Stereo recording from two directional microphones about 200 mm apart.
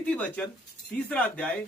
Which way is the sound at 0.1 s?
5° left (ahead or behind).